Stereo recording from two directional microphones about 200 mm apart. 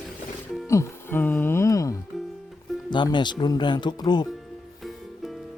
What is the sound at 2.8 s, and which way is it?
Speech, 25° left (ahead or behind).